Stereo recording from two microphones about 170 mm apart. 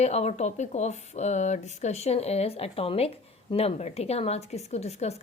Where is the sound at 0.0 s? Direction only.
40° left (ahead or behind).